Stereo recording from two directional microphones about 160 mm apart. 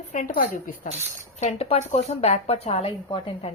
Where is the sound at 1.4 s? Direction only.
45° left (ahead or behind).